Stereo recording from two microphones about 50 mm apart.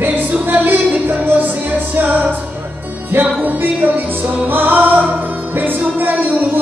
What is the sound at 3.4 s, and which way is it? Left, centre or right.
Music, right.